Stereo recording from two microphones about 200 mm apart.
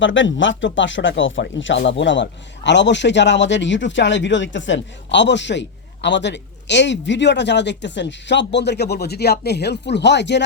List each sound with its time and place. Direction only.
0.0 s speech: 70° left (ahead or behind)